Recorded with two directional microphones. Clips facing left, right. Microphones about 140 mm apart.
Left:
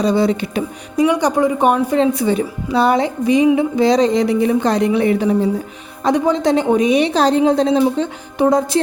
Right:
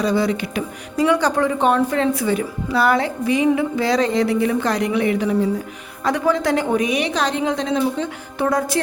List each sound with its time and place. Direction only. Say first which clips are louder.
0.0 s a woman's voice: left 4 dB; 25° left (ahead or behind)
0.9 s a woman's voice: left 3 dB; 15° left (ahead or behind); by 8.0 s 35° left (ahead or behind)
8.4 s a woman's voice: left 5 dB; 20° left (ahead or behind)